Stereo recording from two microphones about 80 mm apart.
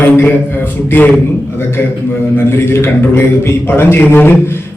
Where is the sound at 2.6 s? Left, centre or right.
Left.